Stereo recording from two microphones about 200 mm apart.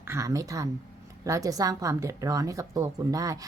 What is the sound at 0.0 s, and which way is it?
A woman's voice, 15° right (ahead or behind).